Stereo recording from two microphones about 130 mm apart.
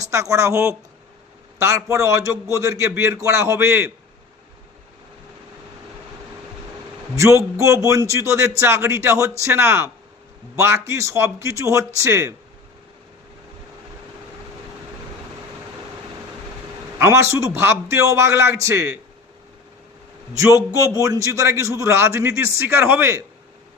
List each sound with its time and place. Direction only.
0.0 s a man's voice: 25° right (ahead or behind)
7.2 s a man's voice: 20° right (ahead or behind)
17.0 s a man's voice: 20° right (ahead or behind)
20.3 s a man's voice: 25° right (ahead or behind)